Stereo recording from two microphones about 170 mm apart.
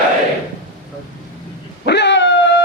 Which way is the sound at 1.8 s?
90° left.